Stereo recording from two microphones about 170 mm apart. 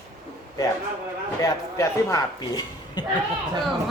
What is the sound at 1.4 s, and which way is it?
A man's voice, 20° left (ahead or behind).